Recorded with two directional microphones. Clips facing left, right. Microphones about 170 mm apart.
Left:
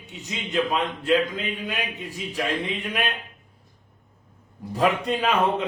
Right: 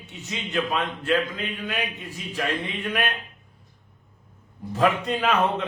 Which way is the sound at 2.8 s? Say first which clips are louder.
Right 1 dB; 10° left (ahead or behind).